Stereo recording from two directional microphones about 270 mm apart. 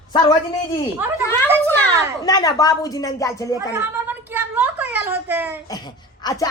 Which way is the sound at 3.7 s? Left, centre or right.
Centre.